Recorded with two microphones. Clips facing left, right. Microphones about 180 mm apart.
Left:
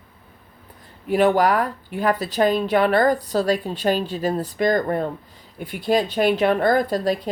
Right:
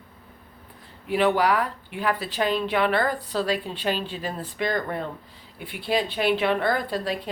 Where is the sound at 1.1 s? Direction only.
45° left (ahead or behind).